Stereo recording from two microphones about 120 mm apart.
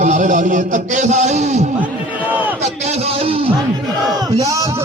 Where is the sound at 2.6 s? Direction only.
70° right (ahead or behind); by 3.5 s 55° right (ahead or behind).